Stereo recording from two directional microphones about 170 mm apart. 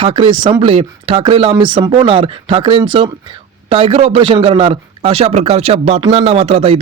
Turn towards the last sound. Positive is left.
turn(degrees=-35)  # may be behind; listen again after turning